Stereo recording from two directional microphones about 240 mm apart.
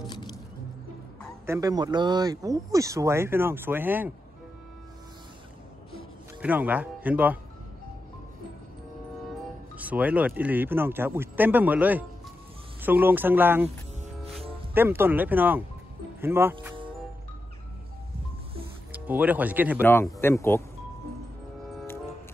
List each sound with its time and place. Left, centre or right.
0.0 s music: centre
1.4 s speech: centre
6.4 s speech: centre
9.8 s speech: centre
14.7 s speech: centre
18.9 s speech: centre
19.8 s speech: centre